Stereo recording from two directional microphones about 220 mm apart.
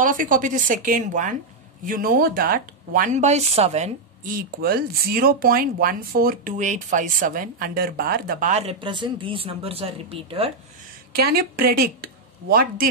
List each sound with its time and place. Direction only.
0.0 s speech: 35° right (ahead or behind)
11.1 s speech: 45° right (ahead or behind)